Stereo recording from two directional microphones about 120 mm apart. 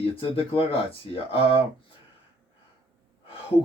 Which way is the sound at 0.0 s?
50° left (ahead or behind).